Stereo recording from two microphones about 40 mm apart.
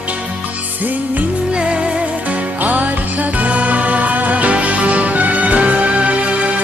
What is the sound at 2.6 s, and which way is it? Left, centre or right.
Music, right.